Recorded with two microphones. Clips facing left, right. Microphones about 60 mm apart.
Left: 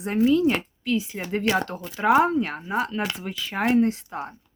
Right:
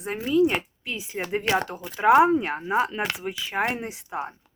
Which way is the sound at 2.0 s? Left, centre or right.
Centre.